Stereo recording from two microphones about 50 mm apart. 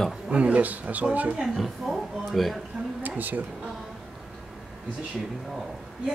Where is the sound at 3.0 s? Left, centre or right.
Right.